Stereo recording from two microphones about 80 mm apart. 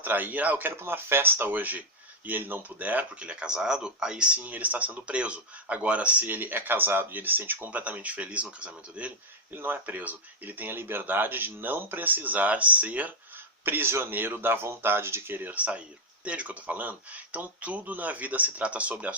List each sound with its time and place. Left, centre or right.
0.0 s speech: right
9.5 s speech: right